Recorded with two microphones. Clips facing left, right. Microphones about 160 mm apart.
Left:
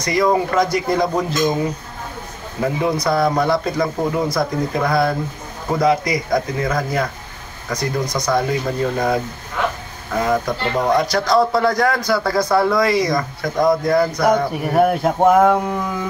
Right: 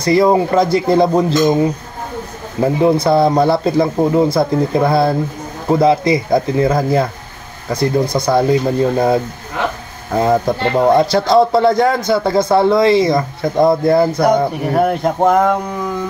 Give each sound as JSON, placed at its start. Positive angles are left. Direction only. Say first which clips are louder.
{"t": 0.0, "sound": "speech", "louder": "right 5 dB", "side_deg": -30}
{"t": 2.6, "sound": "speech", "louder": "right 6 dB", "side_deg": -30}
{"t": 14.7, "sound": "speech", "louder": "left 1 dB", "side_deg": 0}